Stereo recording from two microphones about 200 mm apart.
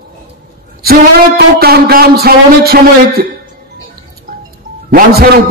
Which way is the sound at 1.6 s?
50° right (ahead or behind).